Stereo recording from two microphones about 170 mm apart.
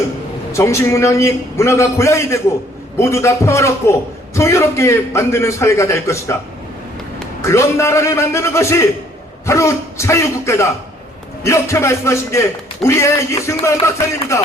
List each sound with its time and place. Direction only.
0.5 s a man's voice: 15° left (ahead or behind)
7.4 s a man's voice: 15° left (ahead or behind)